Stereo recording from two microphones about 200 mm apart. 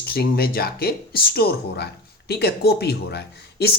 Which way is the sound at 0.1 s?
50° left (ahead or behind).